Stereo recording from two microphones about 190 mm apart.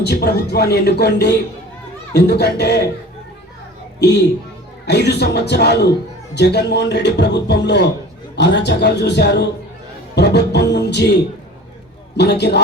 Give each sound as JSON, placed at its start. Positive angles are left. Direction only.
{"t": 0.0, "sound": "speech", "side_deg": 55}
{"t": 4.0, "sound": "speech", "side_deg": 60}